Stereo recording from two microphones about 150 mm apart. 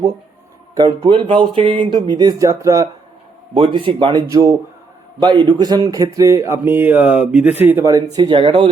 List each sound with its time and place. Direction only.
0.8 s speech: 30° right (ahead or behind)
3.5 s speech: 35° right (ahead or behind)